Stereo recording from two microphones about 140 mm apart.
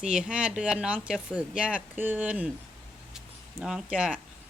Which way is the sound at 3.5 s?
5° right (ahead or behind).